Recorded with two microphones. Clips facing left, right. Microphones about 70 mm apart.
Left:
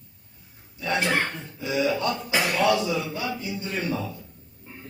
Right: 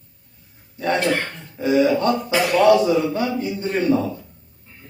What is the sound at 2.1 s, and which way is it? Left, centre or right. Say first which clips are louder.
Speech: right 6 dB; centre.